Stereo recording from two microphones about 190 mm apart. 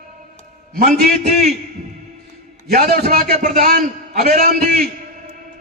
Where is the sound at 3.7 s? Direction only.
50° right (ahead or behind).